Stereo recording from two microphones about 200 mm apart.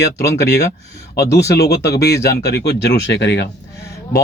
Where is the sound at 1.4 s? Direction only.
55° left (ahead or behind).